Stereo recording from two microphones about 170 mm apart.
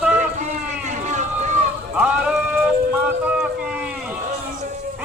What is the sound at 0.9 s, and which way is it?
Run, 45° right (ahead or behind).